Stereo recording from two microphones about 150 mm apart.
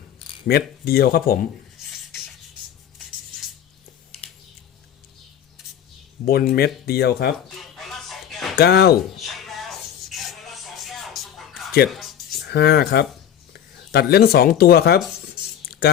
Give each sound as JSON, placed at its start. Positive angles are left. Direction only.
{"t": 0.4, "sound": "speech", "side_deg": 90}
{"t": 6.2, "sound": "speech", "side_deg": 85}
{"t": 7.6, "sound": "music", "side_deg": 0}
{"t": 8.5, "sound": "speech", "side_deg": 90}
{"t": 9.2, "sound": "a sound", "side_deg": 0}
{"t": 10.1, "sound": "music", "side_deg": 0}
{"t": 11.9, "sound": "writing", "side_deg": 0}
{"t": 12.4, "sound": "speech", "side_deg": 90}
{"t": 15.6, "sound": "a sound", "side_deg": 90}